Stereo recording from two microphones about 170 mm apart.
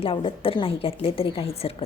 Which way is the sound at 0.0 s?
30° left (ahead or behind).